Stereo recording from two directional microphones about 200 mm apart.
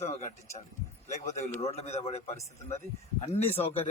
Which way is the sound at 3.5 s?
30° left (ahead or behind).